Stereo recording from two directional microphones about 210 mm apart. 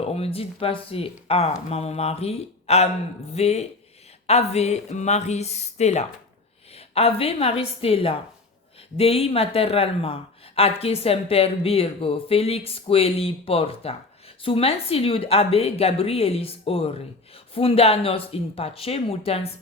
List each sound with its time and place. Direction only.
0.0 s a woman's voice: 30° left (ahead or behind)